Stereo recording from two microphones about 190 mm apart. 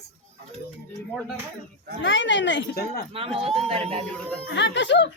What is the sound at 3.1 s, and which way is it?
Speech, 30° right (ahead or behind).